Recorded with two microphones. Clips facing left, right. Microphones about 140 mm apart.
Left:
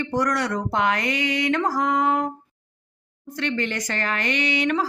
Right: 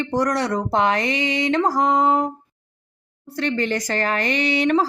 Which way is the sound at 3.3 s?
35° right (ahead or behind).